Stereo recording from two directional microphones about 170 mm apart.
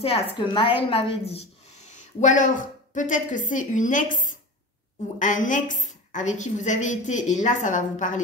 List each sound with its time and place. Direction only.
0.4 s a woman's voice: 30° left (ahead or behind); by 8.2 s 45° left (ahead or behind)